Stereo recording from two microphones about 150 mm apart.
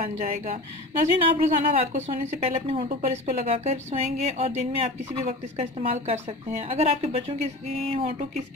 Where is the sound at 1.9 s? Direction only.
50° right (ahead or behind).